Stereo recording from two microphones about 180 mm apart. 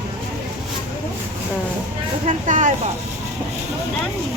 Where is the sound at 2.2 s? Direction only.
45° right (ahead or behind).